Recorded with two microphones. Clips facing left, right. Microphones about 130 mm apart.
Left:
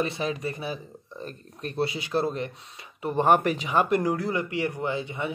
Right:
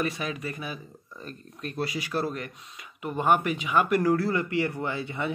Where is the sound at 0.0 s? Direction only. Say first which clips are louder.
Left 2 dB; 30° left (ahead or behind).